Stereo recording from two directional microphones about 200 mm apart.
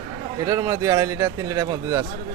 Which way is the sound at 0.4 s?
15° right (ahead or behind).